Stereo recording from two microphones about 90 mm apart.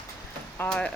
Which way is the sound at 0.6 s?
10° left (ahead or behind).